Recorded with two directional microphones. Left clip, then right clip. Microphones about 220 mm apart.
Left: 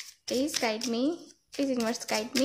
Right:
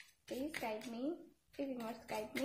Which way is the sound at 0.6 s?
50° left (ahead or behind).